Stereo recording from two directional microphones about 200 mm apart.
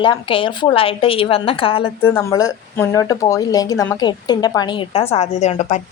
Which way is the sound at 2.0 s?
15° left (ahead or behind).